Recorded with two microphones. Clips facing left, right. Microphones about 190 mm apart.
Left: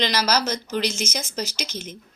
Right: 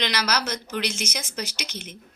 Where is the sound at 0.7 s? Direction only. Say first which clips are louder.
Left 3 dB; 35° left (ahead or behind).